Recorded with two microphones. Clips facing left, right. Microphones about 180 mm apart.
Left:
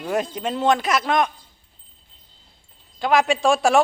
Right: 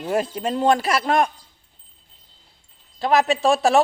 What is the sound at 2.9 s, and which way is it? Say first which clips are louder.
Speech: even; centre (ahead or behind).